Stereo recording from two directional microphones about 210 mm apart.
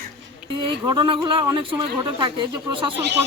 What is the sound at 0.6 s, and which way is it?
Speech, 20° right (ahead or behind).